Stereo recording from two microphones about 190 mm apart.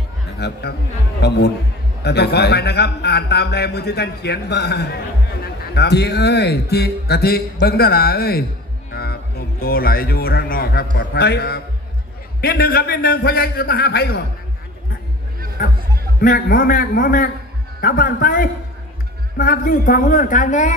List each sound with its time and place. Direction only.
0.4 s a man's voice: 60° left (ahead or behind)
16.2 s speech: 50° left (ahead or behind)